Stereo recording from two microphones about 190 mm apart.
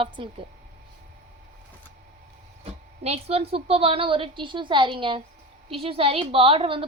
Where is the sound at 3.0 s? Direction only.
35° right (ahead or behind).